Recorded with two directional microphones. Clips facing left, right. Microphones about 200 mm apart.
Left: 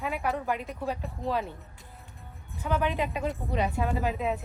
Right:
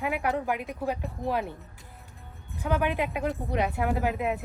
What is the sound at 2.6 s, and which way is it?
Speech, 15° right (ahead or behind).